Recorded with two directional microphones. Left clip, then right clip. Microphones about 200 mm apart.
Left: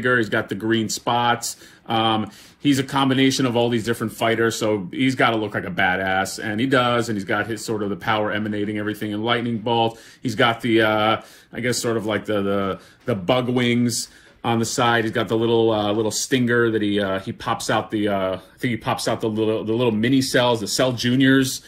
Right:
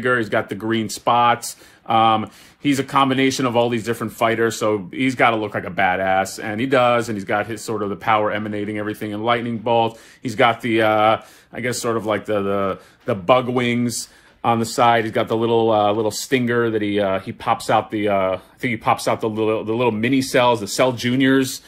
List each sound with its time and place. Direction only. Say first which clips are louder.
0.0 s speech: right 1 dB; 40° right (ahead or behind)